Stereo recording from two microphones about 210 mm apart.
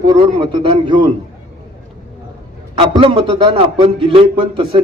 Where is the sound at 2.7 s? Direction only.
25° right (ahead or behind).